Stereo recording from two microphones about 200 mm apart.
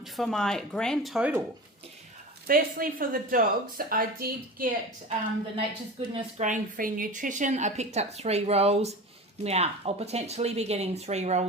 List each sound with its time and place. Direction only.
0.0 s speech: centre (ahead or behind)
2.5 s speech: 45° right (ahead or behind)
5.5 s speech: 30° right (ahead or behind)